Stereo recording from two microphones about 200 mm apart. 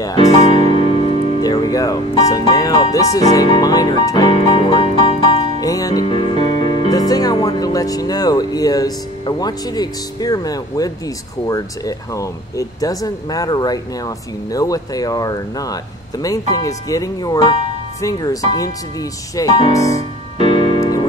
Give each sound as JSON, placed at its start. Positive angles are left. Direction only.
{"t": 0.6, "sound": "music", "side_deg": -30}
{"t": 0.8, "sound": "music", "side_deg": 25}
{"t": 2.2, "sound": "speech", "side_deg": 20}
{"t": 5.6, "sound": "speech", "side_deg": 20}
{"t": 20.3, "sound": "music", "side_deg": 25}